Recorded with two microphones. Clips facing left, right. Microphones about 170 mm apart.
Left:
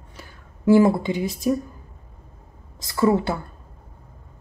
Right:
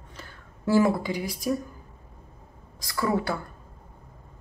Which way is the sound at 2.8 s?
25° left (ahead or behind).